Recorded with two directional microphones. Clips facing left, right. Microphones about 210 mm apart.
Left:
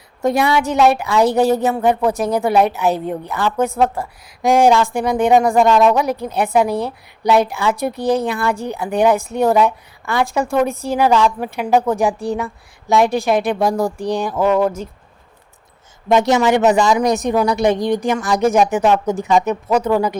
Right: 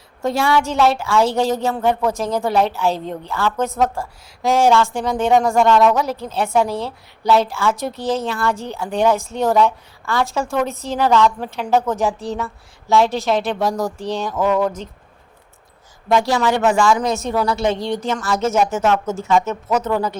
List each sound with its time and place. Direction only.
0.2 s a woman's voice: 15° left (ahead or behind)
16.0 s a woman's voice: 20° left (ahead or behind)